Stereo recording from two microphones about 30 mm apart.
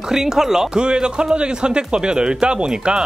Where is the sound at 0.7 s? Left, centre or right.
Right.